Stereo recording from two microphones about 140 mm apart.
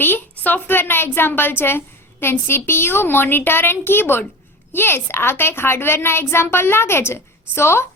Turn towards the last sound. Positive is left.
turn(degrees=20)  # may be behind; listen again after turning